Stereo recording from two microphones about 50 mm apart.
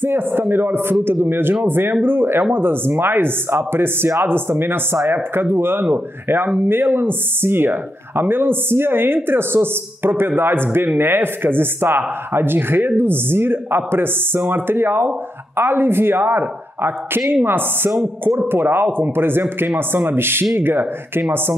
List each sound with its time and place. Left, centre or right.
0.0 s speech: right